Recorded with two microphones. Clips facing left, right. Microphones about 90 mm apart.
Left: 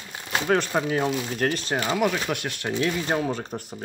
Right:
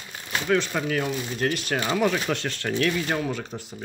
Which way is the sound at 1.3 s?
40° left (ahead or behind).